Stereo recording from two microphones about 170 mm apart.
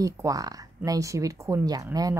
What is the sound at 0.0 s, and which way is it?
Speech, 20° right (ahead or behind).